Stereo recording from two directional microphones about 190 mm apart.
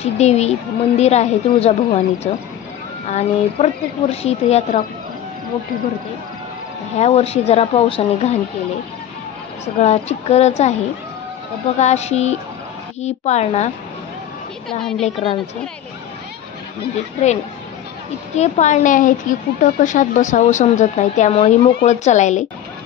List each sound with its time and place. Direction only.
0.0 s speech: 35° left (ahead or behind)
7.0 s speech: 35° left (ahead or behind)
9.8 s speech: 35° left (ahead or behind)
11.8 s speech: 35° left (ahead or behind)
14.8 s a woman's voice: 5° left (ahead or behind)
15.0 s speech: 30° left (ahead or behind)
17.2 s speech: 35° left (ahead or behind)